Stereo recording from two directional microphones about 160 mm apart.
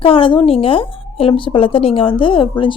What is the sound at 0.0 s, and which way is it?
A woman's voice, 35° left (ahead or behind).